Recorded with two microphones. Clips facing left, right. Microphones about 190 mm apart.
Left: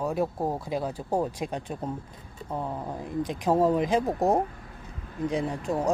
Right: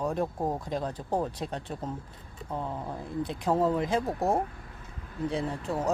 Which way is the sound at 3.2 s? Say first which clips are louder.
Left 3 dB; 15° left (ahead or behind).